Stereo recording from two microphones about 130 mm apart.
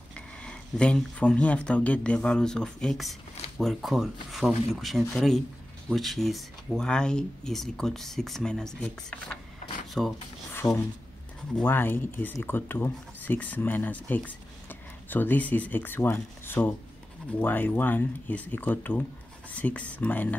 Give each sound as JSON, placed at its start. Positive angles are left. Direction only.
{"t": 0.1, "sound": "speech", "side_deg": 10}
{"t": 11.5, "sound": "speech", "side_deg": 15}